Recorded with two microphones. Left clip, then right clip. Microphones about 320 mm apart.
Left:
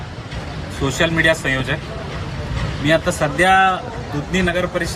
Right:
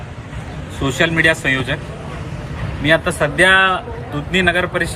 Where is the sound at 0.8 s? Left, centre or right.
Centre.